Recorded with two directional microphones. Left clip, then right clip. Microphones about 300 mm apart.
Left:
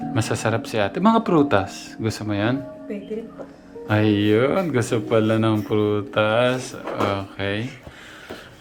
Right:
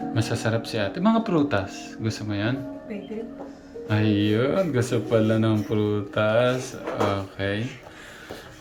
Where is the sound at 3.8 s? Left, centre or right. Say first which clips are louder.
Left 5 dB; centre.